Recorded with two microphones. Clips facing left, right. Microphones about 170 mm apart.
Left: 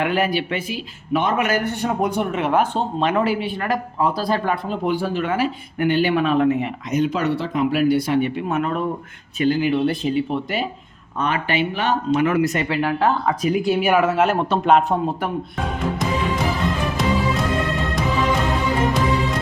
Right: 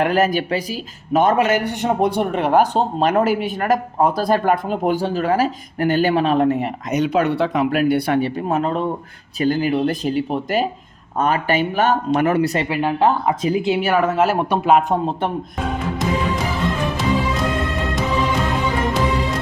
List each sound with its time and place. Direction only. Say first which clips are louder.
0.0 s speech: right 3 dB; 40° right (ahead or behind)
1.4 s speech: right 3 dB; 25° right (ahead or behind)
6.9 s speech: right 2 dB; 65° right (ahead or behind)
7.7 s speech: right 1 dB; 55° right (ahead or behind)
8.2 s speech: right 2 dB; 35° right (ahead or behind)
9.4 s speech: even; 40° right (ahead or behind)
12.3 s speech: right 1 dB; 30° right (ahead or behind)
12.6 s speech: right 2 dB; 15° right (ahead or behind)
14.0 s speech: right 1 dB; centre (ahead or behind)
14.3 s speech: right 1 dB; 10° right (ahead or behind)
14.8 s speech: right 2 dB; 25° right (ahead or behind)